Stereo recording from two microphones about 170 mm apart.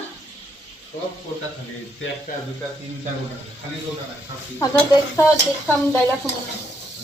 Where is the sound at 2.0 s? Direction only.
90° left.